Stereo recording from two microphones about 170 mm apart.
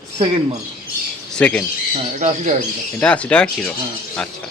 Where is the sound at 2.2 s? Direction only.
45° right (ahead or behind).